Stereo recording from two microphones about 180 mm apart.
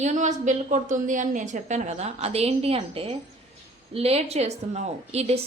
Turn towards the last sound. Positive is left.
turn(degrees=-35)  # may be behind; listen again after turning